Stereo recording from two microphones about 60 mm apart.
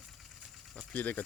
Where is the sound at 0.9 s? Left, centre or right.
Left.